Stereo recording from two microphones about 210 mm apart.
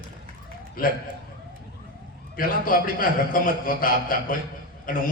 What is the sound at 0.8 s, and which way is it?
Speech, 45° left (ahead or behind).